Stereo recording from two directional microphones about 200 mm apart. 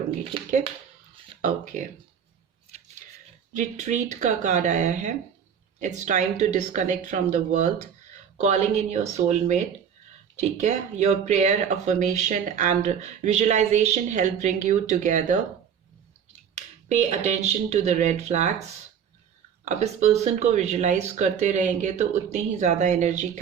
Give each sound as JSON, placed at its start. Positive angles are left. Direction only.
{"t": 1.4, "sound": "speech", "side_deg": -40}
{"t": 3.5, "sound": "speech", "side_deg": -40}
{"t": 16.9, "sound": "speech", "side_deg": -35}
{"t": 19.6, "sound": "speech", "side_deg": -35}